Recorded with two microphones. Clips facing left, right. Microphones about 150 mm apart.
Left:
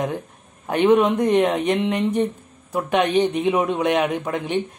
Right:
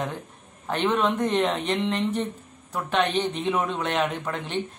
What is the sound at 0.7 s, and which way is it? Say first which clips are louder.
A man's voice: left 7 dB; 10° left (ahead or behind).